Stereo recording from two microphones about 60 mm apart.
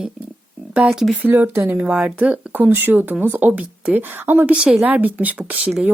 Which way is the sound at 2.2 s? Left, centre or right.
Right.